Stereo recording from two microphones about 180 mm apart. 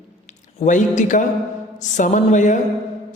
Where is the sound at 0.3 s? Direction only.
40° left (ahead or behind).